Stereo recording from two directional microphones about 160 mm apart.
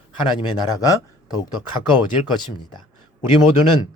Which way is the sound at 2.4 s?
30° left (ahead or behind).